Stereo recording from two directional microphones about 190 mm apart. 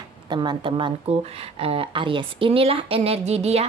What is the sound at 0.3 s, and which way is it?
Speech, 25° right (ahead or behind).